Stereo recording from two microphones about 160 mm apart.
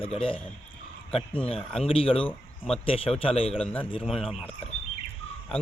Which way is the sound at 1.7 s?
35° left (ahead or behind).